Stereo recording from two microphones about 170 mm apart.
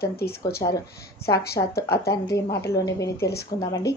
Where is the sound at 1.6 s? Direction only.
20° left (ahead or behind).